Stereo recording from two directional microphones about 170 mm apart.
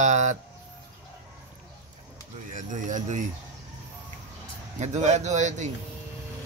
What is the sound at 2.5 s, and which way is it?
Speech, 45° right (ahead or behind).